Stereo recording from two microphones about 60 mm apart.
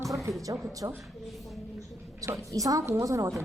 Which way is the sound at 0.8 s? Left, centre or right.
Right.